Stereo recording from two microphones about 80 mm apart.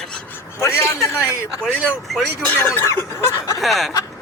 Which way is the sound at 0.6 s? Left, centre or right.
Left.